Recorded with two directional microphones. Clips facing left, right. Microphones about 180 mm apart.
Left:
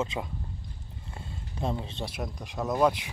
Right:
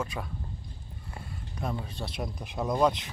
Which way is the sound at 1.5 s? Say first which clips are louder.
Left 3 dB; 25° left (ahead or behind).